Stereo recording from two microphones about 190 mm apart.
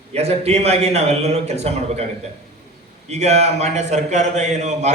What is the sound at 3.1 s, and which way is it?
A man's voice, 35° right (ahead or behind).